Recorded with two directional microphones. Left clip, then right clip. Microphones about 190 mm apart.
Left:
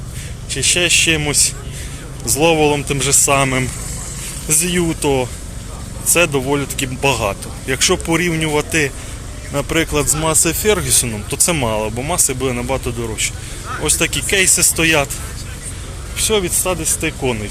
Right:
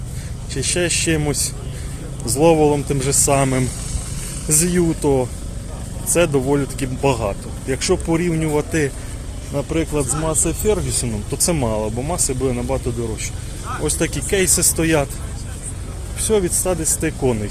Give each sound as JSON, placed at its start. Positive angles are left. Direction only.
{"t": 0.5, "sound": "speech", "side_deg": -20}
{"t": 7.0, "sound": "speech", "side_deg": -10}
{"t": 9.5, "sound": "speech", "side_deg": 0}
{"t": 11.3, "sound": "speech", "side_deg": -10}
{"t": 13.8, "sound": "speech", "side_deg": -20}
{"t": 16.2, "sound": "speech", "side_deg": -25}